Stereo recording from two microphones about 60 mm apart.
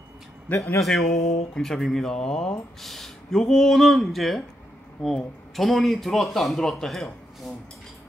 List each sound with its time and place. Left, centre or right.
0.5 s a man's voice: left
0.8 s speech: centre